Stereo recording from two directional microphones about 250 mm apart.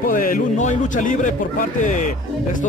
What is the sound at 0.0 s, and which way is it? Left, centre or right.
A man's voice, left.